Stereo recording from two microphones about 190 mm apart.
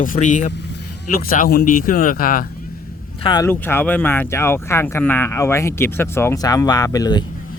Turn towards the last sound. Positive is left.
turn(degrees=20)  # may be behind; listen again after turning